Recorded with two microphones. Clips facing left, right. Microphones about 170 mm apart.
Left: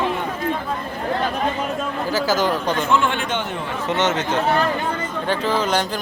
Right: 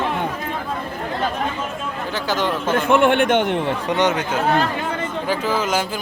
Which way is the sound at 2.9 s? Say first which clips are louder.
Right 9 dB; 60° right (ahead or behind).